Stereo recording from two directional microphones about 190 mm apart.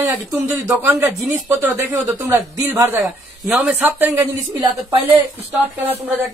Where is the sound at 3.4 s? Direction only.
Centre (ahead or behind).